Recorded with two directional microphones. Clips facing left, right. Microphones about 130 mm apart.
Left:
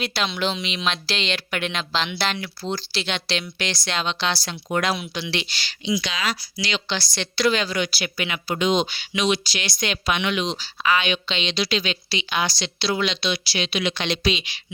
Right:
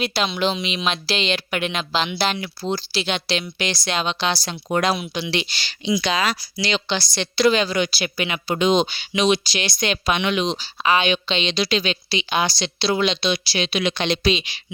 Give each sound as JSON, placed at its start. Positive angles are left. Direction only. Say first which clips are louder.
{"t": 0.0, "sound": "speech", "louder": "right 3 dB", "side_deg": -10}
{"t": 4.7, "sound": "a woman's voice", "louder": "right 3 dB", "side_deg": -30}
{"t": 4.9, "sound": "speech", "louder": "right 3 dB", "side_deg": -15}
{"t": 5.8, "sound": "speech", "louder": "right 4 dB", "side_deg": -40}
{"t": 6.8, "sound": "a woman's voice", "louder": "right 3 dB", "side_deg": -20}
{"t": 13.7, "sound": "speech", "louder": "right 3 dB", "side_deg": -45}
{"t": 14.1, "sound": "speech", "louder": "right 4 dB", "side_deg": -30}